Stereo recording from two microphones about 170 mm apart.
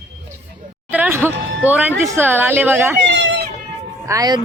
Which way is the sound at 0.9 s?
10° right (ahead or behind).